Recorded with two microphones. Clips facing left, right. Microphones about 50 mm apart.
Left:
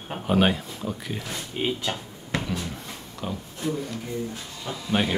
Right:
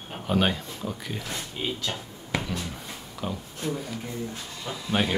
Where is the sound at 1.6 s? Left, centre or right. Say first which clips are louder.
Left 5 dB; left.